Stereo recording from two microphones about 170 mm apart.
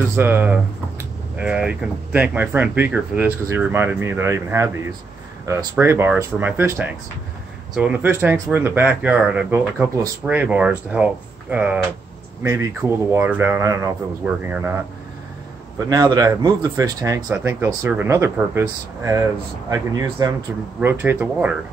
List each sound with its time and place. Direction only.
0.1 s speech: 15° right (ahead or behind)
15.8 s speech: 20° right (ahead or behind)